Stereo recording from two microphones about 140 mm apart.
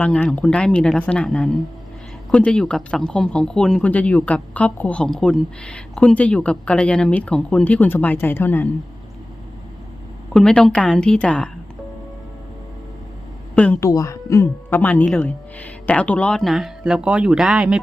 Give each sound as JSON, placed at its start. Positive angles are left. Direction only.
{"t": 0.0, "sound": "speech", "side_deg": 10}
{"t": 10.3, "sound": "speech", "side_deg": 5}
{"t": 13.6, "sound": "speech", "side_deg": 10}
{"t": 13.8, "sound": "speech", "side_deg": 20}